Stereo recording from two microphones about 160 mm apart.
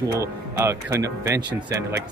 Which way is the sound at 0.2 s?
15° right (ahead or behind).